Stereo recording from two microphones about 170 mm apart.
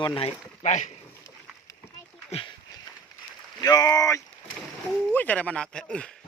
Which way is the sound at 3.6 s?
20° left (ahead or behind).